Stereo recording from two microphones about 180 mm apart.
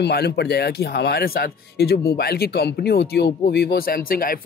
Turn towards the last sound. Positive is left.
turn(degrees=55)  # may be behind; listen again after turning